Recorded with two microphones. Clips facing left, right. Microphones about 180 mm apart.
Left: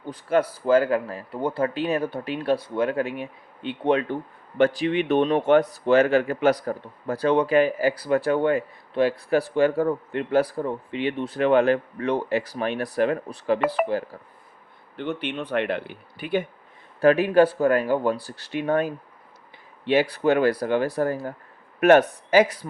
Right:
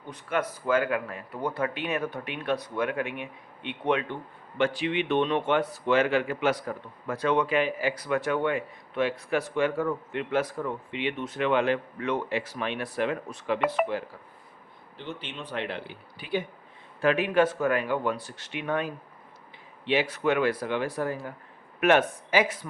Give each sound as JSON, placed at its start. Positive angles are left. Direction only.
{"t": 0.1, "sound": "speech", "side_deg": 35}
{"t": 14.9, "sound": "a man's voice", "side_deg": 60}
{"t": 17.0, "sound": "speech", "side_deg": 40}